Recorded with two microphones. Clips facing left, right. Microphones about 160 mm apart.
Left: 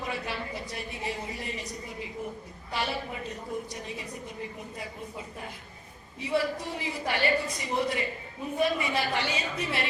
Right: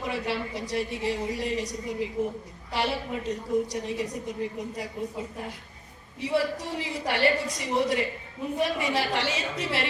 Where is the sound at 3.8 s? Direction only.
70° right (ahead or behind).